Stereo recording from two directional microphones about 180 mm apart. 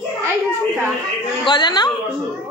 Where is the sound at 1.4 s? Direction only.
25° left (ahead or behind).